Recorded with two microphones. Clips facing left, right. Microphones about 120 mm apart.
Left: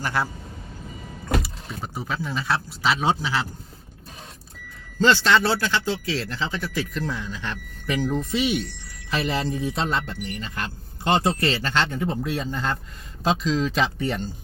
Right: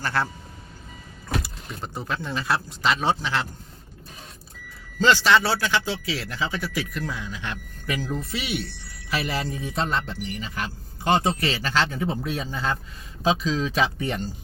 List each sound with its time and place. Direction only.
0.0 s speech: 10° left (ahead or behind)
1.4 s speech: 5° left (ahead or behind)
5.0 s speech: 5° right (ahead or behind)